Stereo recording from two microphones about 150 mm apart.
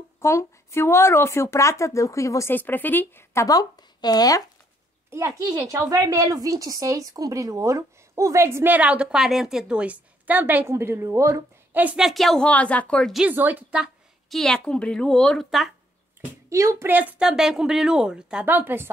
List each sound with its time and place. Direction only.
0.2 s speech: 20° left (ahead or behind)
5.1 s a woman's voice: 20° right (ahead or behind); by 13.2 s 5° left (ahead or behind)
13.2 s a woman's voice: 10° right (ahead or behind)
14.3 s a woman's voice: 5° left (ahead or behind)
16.4 s a woman's voice: 20° right (ahead or behind)